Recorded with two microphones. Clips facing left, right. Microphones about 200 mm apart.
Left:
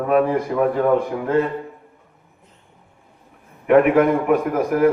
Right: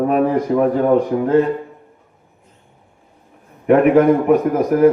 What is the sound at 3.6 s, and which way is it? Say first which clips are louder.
A man's voice: right 3 dB; 35° right (ahead or behind).